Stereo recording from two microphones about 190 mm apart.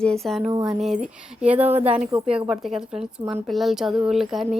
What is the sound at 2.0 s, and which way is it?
Speech, 30° right (ahead or behind).